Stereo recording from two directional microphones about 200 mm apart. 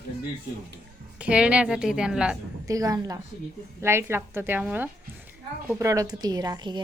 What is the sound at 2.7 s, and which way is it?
A woman's voice, 15° right (ahead or behind).